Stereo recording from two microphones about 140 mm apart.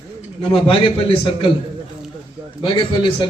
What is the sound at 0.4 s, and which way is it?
A man's voice, 40° left (ahead or behind).